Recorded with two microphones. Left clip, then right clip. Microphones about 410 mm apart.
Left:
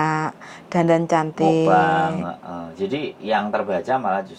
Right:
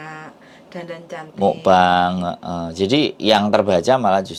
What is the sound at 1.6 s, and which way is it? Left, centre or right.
Mantra, right.